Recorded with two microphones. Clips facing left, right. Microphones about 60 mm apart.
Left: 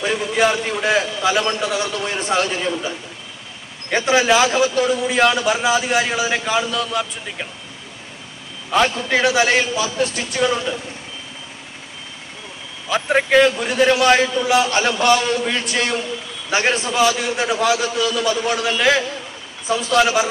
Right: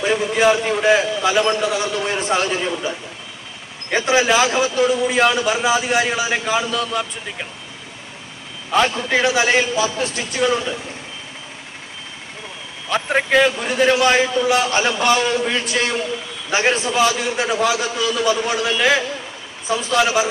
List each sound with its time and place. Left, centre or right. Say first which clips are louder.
0.0 s a man's voice: right 2 dB; centre
4.1 s a man's voice: left 1 dB; centre
5.0 s a man's voice: even; centre
8.7 s a man's voice: even; centre
10.4 s a man's voice: right 1 dB; centre
12.9 s a man's voice: left 2 dB; centre
14.8 s a man's voice: left 1 dB; centre
18.0 s a man's voice: right 4 dB; centre
18.5 s a man's voice: even; centre